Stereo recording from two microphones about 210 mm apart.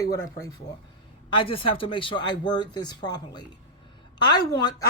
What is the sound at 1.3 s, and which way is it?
Speech, 25° left (ahead or behind).